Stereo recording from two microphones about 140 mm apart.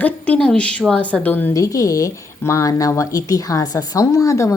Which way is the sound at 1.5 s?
25° left (ahead or behind).